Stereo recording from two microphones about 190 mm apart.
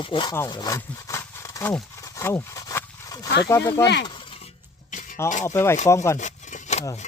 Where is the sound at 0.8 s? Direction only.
15° left (ahead or behind).